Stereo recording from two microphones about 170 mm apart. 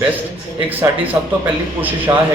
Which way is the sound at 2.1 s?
20° right (ahead or behind).